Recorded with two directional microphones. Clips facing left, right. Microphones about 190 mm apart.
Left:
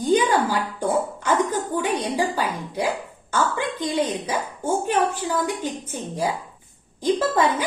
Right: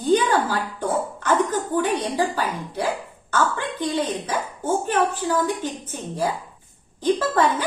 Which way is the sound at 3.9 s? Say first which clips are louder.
Even; 15° left (ahead or behind).